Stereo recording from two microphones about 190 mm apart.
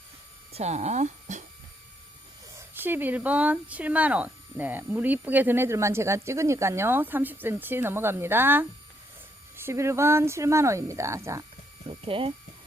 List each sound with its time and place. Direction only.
0.5 s speech: 35° right (ahead or behind)
2.6 s speech: 10° right (ahead or behind)
11.9 s speech: 30° right (ahead or behind)